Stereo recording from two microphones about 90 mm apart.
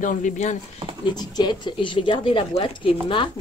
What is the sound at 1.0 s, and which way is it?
Speech, 50° left (ahead or behind).